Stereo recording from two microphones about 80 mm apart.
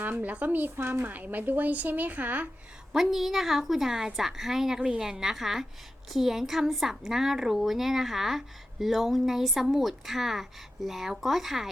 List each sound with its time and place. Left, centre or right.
0.0 s speech: right
2.9 s a woman's voice: centre